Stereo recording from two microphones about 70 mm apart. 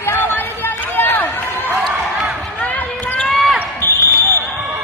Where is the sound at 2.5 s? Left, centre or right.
Left.